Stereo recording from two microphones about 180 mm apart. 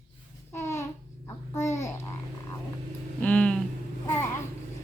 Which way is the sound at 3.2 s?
5° left (ahead or behind).